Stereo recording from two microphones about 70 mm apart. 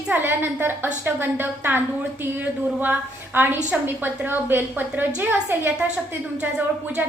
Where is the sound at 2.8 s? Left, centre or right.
Right.